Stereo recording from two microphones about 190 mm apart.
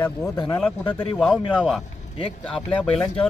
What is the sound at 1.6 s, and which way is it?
A man's voice, centre (ahead or behind).